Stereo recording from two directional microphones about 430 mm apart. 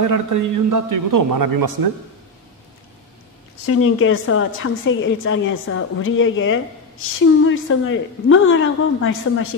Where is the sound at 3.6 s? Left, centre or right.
Left.